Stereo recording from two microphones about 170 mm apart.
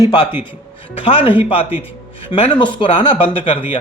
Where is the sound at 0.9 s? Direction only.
30° left (ahead or behind).